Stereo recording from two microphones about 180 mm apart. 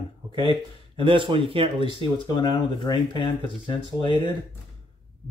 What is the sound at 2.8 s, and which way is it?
Speech, 25° left (ahead or behind).